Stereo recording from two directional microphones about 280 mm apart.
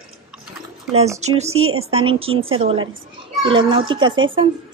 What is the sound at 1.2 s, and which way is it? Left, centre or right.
A woman's voice, right.